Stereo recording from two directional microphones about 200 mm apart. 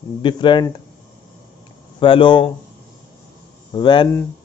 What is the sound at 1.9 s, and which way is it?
Speech, 25° left (ahead or behind).